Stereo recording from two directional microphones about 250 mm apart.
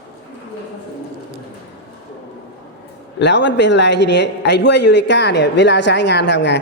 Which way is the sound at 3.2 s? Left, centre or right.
Left.